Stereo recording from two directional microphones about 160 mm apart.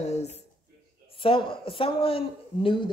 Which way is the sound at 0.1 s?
45° left (ahead or behind).